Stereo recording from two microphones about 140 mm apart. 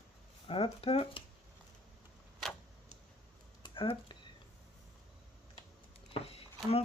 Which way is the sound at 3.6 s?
35° left (ahead or behind).